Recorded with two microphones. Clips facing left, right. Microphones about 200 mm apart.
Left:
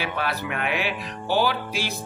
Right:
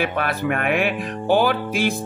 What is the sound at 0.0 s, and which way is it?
Speech, 50° right (ahead or behind).